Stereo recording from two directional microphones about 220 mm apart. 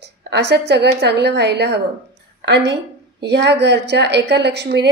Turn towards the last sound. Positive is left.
turn(degrees=-50)  # may be behind; listen again after turning